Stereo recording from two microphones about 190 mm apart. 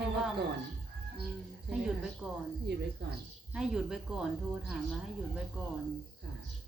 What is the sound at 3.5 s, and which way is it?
Speech, 5° right (ahead or behind).